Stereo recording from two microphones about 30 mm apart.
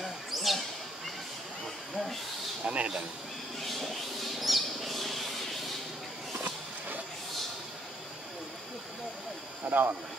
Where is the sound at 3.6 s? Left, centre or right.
Centre.